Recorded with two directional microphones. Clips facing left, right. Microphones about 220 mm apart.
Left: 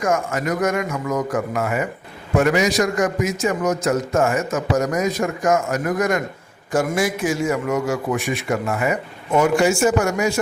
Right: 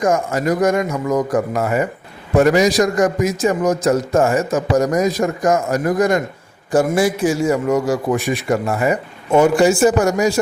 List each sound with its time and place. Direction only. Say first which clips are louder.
0.0 s a man's voice: right 4 dB; 35° right (ahead or behind)